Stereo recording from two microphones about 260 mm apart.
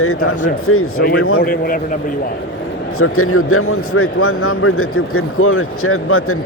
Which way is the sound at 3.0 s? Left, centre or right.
Left.